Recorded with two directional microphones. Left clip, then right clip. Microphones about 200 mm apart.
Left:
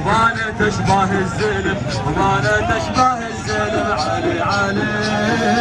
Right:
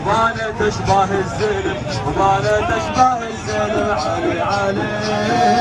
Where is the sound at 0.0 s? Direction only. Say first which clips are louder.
Left 1 dB; 35° right (ahead or behind).